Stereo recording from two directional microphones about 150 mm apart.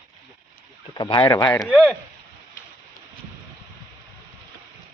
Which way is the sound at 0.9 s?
35° left (ahead or behind).